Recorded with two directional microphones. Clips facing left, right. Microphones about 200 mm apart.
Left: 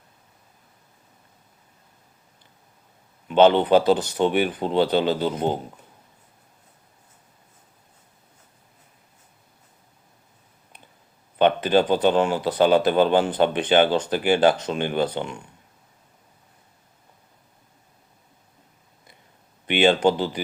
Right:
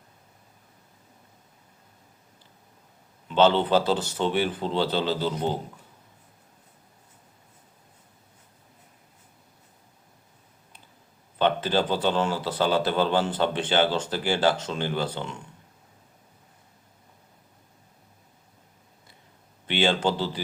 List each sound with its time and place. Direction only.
3.2 s speech: 15° left (ahead or behind)
11.3 s speech: 15° left (ahead or behind)
19.6 s speech: 15° left (ahead or behind)